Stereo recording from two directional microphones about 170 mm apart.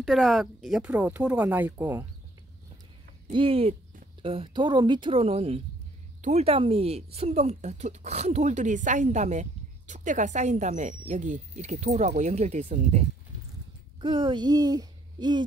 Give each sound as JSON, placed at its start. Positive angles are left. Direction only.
{"t": 0.0, "sound": "speech", "side_deg": 0}
{"t": 3.3, "sound": "speech", "side_deg": -30}
{"t": 13.9, "sound": "a child's voice", "side_deg": -30}